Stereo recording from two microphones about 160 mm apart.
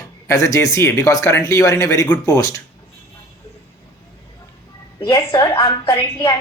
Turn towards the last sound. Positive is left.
turn(degrees=20)  # may be behind; listen again after turning